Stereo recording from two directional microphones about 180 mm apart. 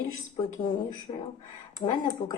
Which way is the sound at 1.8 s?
25° left (ahead or behind).